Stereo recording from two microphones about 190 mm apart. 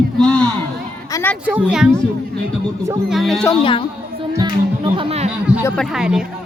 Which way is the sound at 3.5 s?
25° left (ahead or behind).